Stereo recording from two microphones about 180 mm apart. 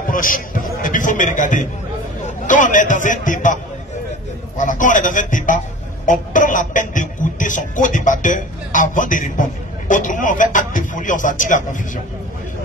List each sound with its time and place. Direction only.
0.0 s a sound: 50° left (ahead or behind)
2.2 s speech: 45° left (ahead or behind)
4.6 s a man's voice: 45° left (ahead or behind)